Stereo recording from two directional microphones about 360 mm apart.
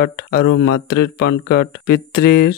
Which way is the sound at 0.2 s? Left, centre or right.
Left.